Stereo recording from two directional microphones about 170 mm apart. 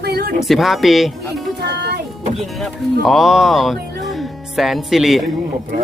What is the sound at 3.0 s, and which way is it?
Speech, centre (ahead or behind).